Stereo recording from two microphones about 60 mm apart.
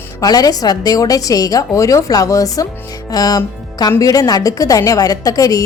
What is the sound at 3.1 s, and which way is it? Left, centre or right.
A woman's voice, left.